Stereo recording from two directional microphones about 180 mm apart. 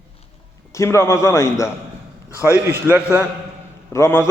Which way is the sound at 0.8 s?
15° left (ahead or behind).